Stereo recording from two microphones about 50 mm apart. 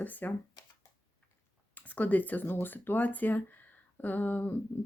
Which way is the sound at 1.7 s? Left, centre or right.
Left.